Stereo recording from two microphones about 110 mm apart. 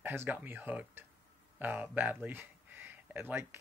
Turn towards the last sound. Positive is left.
turn(degrees=-15)  # may be behind; listen again after turning